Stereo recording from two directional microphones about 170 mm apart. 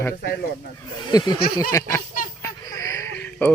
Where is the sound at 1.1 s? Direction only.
20° left (ahead or behind).